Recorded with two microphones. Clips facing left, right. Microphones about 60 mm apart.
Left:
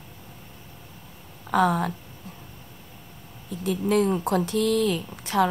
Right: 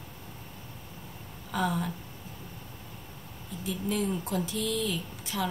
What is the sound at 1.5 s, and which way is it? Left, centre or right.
Speech, left.